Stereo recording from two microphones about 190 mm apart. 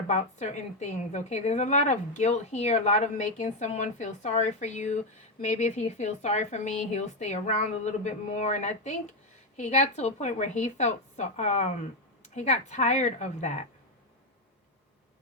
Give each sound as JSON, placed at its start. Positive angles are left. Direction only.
{"t": 0.1, "sound": "a woman's voice", "side_deg": 35}